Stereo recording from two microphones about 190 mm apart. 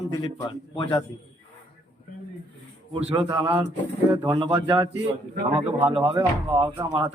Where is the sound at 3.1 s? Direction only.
20° right (ahead or behind).